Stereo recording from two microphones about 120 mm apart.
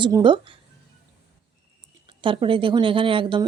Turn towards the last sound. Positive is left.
turn(degrees=-45)  # may be behind; listen again after turning